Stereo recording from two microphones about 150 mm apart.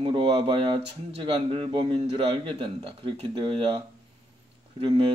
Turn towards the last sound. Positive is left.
turn(degrees=-35)  # may be behind; listen again after turning